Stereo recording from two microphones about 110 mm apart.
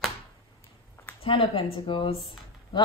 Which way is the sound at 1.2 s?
60° left (ahead or behind).